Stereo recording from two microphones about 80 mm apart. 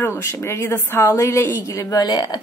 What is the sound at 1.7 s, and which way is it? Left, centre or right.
Speech, left.